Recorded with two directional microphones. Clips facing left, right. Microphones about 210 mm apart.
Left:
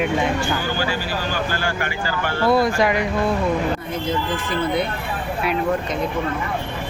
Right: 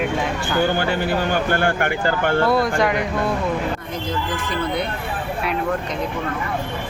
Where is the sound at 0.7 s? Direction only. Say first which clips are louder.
Right 4 dB; 60° right (ahead or behind).